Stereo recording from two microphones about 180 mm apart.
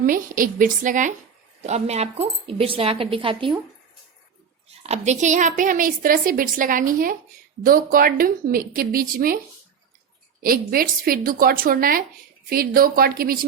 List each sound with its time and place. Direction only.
0.0 s a woman's voice: 50° right (ahead or behind); by 3.5 s 30° right (ahead or behind)
4.8 s a woman's voice: 40° right (ahead or behind)
10.4 s a woman's voice: 55° right (ahead or behind)